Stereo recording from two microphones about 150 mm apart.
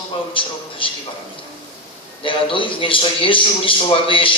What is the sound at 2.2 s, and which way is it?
A man's voice, 35° left (ahead or behind).